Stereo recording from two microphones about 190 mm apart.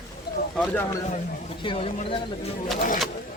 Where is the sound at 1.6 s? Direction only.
30° left (ahead or behind).